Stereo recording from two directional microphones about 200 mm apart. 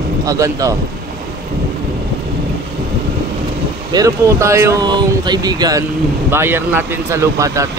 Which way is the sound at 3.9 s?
15° right (ahead or behind).